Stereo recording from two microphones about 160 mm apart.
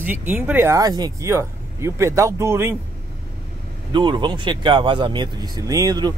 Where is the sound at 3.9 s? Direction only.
30° right (ahead or behind).